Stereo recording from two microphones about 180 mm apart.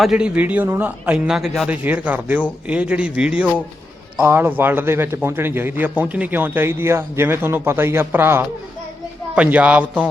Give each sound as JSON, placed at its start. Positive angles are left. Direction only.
{"t": 0.0, "sound": "speech", "side_deg": -5}